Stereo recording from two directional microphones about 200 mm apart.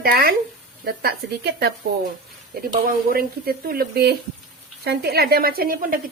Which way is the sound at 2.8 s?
50° right (ahead or behind).